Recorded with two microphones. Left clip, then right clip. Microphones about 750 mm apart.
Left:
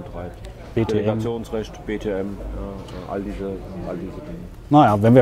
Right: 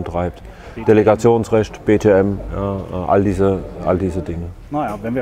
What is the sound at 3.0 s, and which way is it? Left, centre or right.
Speech, right.